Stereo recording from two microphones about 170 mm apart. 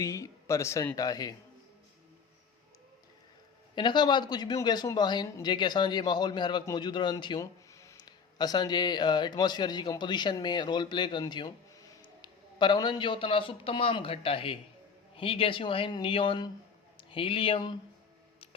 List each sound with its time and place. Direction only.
0.0 s speech: 20° left (ahead or behind)
3.8 s a man's voice: 25° left (ahead or behind)